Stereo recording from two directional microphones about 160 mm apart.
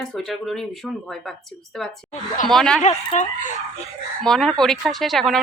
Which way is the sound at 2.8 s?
45° left (ahead or behind).